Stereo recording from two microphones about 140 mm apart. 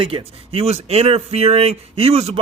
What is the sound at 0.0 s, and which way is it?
Speech, 40° right (ahead or behind).